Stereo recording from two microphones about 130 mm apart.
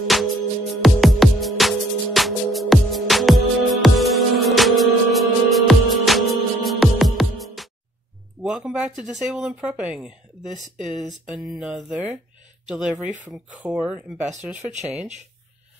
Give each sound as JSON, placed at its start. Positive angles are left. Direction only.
{"t": 0.0, "sound": "music", "side_deg": 0}
{"t": 8.5, "sound": "speech", "side_deg": -5}
{"t": 10.9, "sound": "a sound", "side_deg": 0}
{"t": 12.6, "sound": "speech", "side_deg": -5}
{"t": 14.7, "sound": "speech", "side_deg": -65}